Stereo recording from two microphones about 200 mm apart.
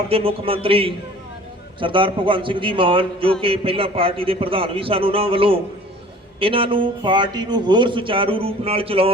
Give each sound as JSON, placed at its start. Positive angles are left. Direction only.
{"t": 0.1, "sound": "a man's voice", "side_deg": -30}